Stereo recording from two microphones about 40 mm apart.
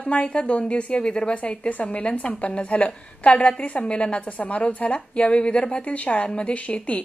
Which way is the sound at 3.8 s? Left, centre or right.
Left.